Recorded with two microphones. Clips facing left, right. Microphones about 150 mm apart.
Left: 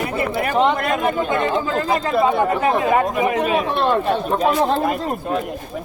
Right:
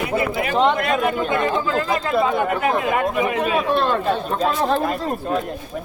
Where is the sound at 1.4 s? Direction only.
25° left (ahead or behind).